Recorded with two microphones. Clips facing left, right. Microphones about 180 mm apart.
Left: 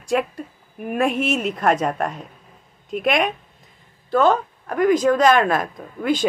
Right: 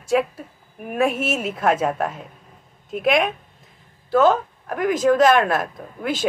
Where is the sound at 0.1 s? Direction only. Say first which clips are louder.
Right 1 dB; centre (ahead or behind).